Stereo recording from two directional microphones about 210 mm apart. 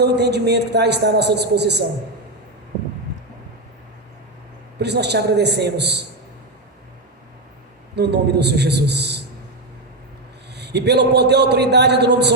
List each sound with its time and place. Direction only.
0.0 s a man's voice: 55° right (ahead or behind)
4.8 s a man's voice: 55° right (ahead or behind)
7.9 s a man's voice: 55° right (ahead or behind)
10.5 s a man's voice: 55° right (ahead or behind)